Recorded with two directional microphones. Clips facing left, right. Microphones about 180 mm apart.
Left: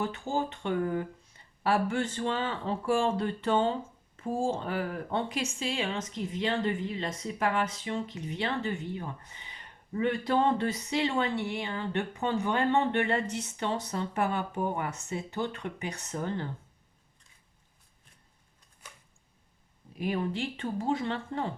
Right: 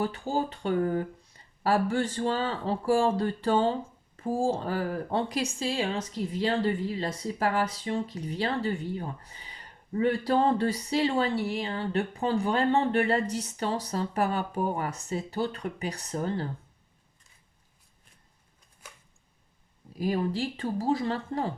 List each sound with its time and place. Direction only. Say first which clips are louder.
0.0 s speech: right 2 dB; 35° right (ahead or behind)
20.0 s speech: right 3 dB; 35° right (ahead or behind)